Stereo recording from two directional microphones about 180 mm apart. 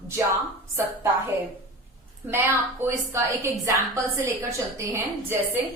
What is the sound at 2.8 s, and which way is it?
A woman's voice, 15° right (ahead or behind).